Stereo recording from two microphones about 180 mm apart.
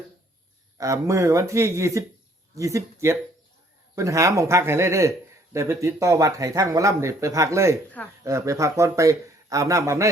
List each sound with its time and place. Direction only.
0.8 s speech: 20° right (ahead or behind)